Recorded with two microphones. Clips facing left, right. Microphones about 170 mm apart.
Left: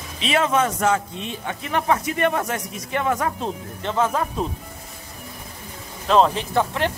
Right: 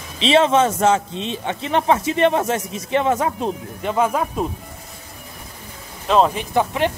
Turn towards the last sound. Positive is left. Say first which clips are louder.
# right 3 dB
turn(degrees=-15)  # may be behind; listen again after turning